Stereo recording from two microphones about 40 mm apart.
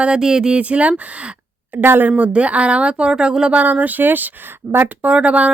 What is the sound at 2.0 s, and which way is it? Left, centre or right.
A woman's voice, right.